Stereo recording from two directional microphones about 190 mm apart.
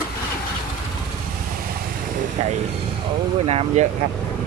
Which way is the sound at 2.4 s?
35° right (ahead or behind).